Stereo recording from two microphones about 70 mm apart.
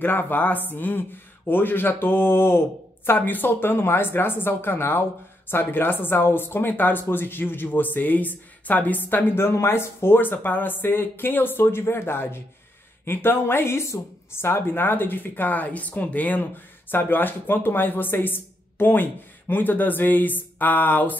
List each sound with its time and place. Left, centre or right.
0.0 s speech: left